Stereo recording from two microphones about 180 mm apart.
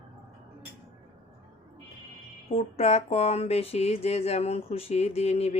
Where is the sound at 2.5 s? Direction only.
35° left (ahead or behind).